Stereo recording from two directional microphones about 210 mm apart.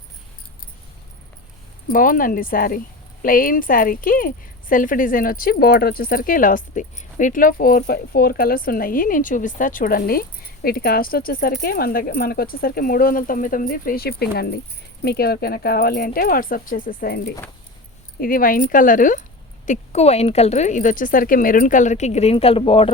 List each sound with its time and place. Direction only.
1.9 s speech: 40° left (ahead or behind)